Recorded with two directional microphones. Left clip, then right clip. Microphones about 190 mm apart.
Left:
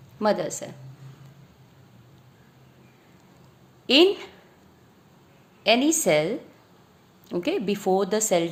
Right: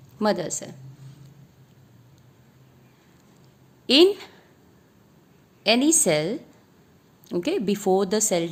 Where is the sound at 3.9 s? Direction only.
35° right (ahead or behind).